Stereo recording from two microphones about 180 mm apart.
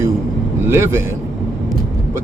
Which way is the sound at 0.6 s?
15° right (ahead or behind).